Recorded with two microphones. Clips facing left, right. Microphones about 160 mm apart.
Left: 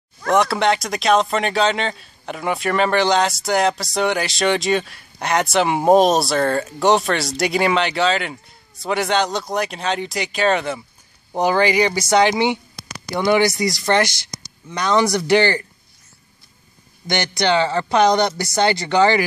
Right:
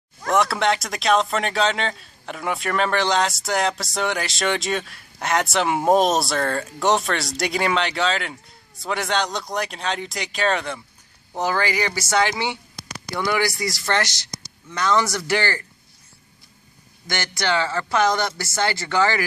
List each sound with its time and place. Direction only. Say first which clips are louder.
0.3 s speech: left 3 dB; centre (ahead or behind)
11.3 s speech: left 6 dB; 20° left (ahead or behind)
17.1 s speech: left 5 dB; 20° left (ahead or behind)